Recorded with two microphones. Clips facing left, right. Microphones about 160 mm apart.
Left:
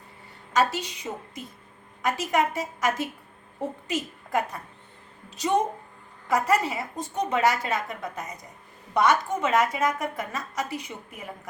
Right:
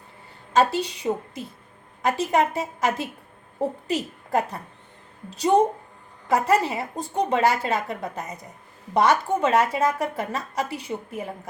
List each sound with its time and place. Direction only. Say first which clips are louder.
0.5 s a woman's voice: right 4 dB; 30° right (ahead or behind)
6.2 s a woman's voice: right 3 dB; 30° right (ahead or behind)